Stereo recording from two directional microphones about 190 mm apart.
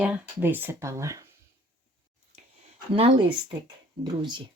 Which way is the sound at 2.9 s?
30° right (ahead or behind).